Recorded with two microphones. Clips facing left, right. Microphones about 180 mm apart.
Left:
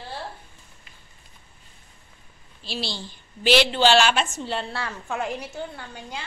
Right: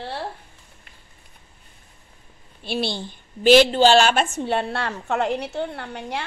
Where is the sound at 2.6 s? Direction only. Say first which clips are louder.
Right 6 dB; 55° right (ahead or behind).